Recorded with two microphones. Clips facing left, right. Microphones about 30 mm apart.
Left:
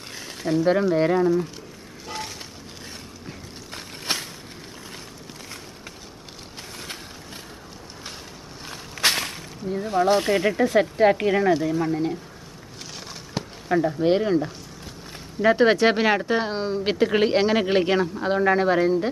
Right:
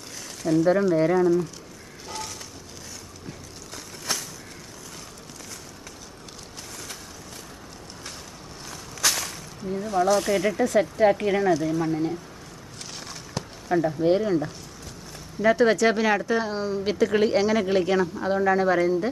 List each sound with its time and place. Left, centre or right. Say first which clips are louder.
0.4 s speech: even; left
2.0 s a sound: left 2 dB; left
3.7 s a sound: left 3 dB; left
8.6 s walk: left 3 dB; left
9.7 s speech: left 2 dB; left
13.1 s a sound: left 4 dB; left
13.7 s speech: left 1 dB; centre
14.0 s speech: left 1 dB; left
15.4 s speech: left 2 dB; left